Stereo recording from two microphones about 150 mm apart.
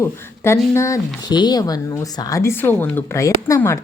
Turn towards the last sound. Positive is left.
turn(degrees=20)  # may be behind; listen again after turning